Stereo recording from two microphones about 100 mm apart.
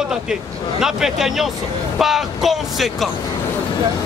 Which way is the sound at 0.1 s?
5° right (ahead or behind).